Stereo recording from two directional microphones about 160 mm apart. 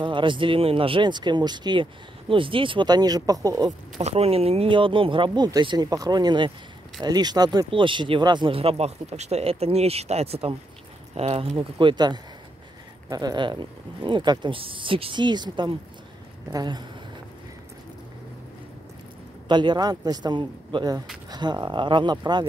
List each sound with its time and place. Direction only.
0.0 s speech: 30° right (ahead or behind)
4.0 s speech: 40° right (ahead or behind)
19.4 s speech: 30° right (ahead or behind)